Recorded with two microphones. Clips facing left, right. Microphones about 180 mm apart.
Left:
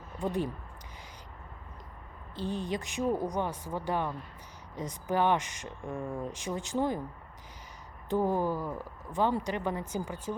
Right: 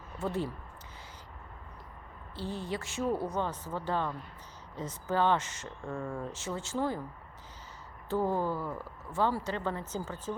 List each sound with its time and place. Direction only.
0.2 s speech: 15° left (ahead or behind)
2.3 s speech: 15° left (ahead or behind)
8.1 s speech: 15° left (ahead or behind)